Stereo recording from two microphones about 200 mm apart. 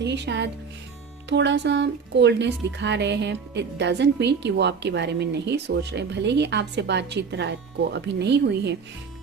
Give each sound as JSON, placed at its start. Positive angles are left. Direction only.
{"t": 0.0, "sound": "speech", "side_deg": -60}